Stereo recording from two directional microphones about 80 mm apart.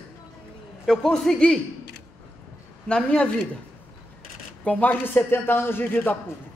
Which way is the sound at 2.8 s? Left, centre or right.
Centre.